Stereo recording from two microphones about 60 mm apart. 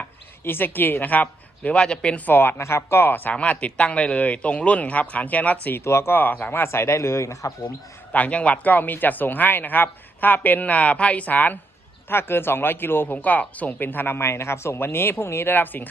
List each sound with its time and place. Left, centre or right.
0.0 s speech: left; by 2.2 s centre
2.2 s speech: left
2.6 s speech: left
3.3 s speech: left
5.8 s speech: left
8.1 s speech: left
12.0 s speech: left
14.8 s speech: left